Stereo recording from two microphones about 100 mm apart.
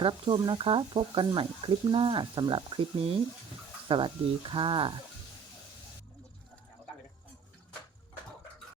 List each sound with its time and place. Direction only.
0.0 s speech: 55° right (ahead or behind)